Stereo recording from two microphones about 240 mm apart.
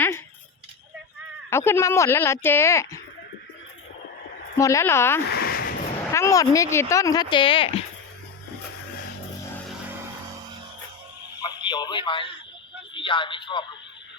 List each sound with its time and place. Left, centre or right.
1.5 s speech: centre
4.5 s speech: centre
5.3 s a sound: left
6.1 s speech: centre
11.4 s a sound: centre
12.9 s speech: left